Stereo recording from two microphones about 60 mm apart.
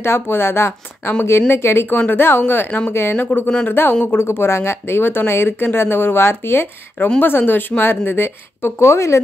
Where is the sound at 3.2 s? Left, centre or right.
Left.